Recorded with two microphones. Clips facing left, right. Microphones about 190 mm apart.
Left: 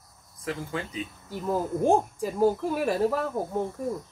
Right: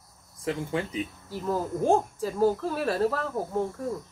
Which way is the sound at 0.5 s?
25° right (ahead or behind).